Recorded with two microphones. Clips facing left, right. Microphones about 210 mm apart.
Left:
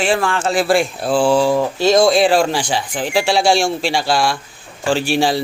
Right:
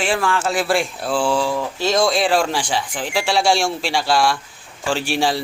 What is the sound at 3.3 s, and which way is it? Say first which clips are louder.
Speech: even; centre (ahead or behind).